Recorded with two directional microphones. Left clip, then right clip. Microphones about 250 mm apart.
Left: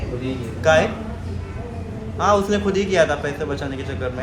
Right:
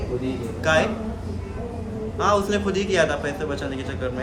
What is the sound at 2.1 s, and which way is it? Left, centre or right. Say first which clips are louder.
A man's voice: left 3 dB; centre.